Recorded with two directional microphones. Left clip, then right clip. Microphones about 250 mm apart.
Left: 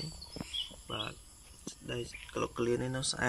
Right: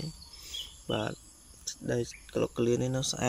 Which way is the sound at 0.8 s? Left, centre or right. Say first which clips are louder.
Right 6 dB; right.